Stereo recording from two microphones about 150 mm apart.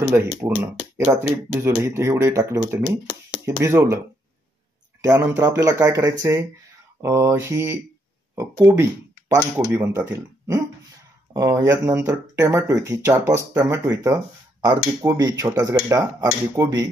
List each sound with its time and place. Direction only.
0.1 s speech: 15° right (ahead or behind)
5.0 s speech: 20° right (ahead or behind)